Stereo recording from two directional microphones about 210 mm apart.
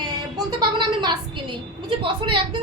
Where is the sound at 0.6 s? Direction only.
20° right (ahead or behind).